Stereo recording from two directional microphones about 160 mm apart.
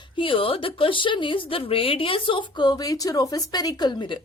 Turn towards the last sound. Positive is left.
turn(degrees=30)  # may be behind; listen again after turning